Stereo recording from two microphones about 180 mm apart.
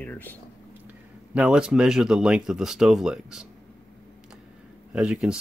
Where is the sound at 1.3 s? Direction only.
5° right (ahead or behind).